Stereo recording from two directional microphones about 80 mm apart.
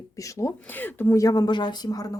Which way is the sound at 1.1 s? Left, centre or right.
Left.